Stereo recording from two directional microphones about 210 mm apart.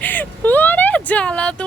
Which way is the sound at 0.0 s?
10° left (ahead or behind).